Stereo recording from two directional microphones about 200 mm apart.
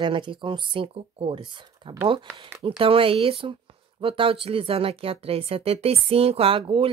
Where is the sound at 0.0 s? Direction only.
25° right (ahead or behind).